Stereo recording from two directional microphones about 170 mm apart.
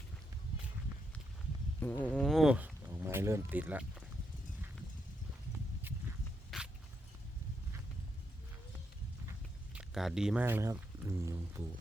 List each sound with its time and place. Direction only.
1.8 s speech: 10° left (ahead or behind); by 3.8 s 10° right (ahead or behind)
6.5 s dog: centre (ahead or behind)
9.7 s speech: centre (ahead or behind)
10.4 s speech: 15° right (ahead or behind)